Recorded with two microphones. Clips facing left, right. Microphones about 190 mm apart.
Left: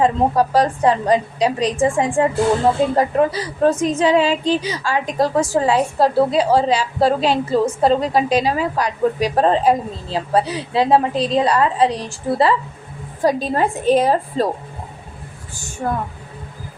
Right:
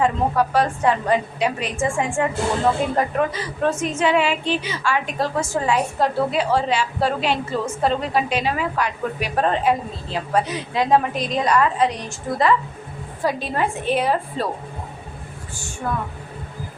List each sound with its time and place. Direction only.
0.0 s a woman's voice: 35° left (ahead or behind)